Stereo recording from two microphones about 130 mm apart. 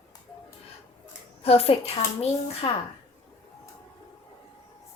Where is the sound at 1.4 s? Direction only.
50° left (ahead or behind).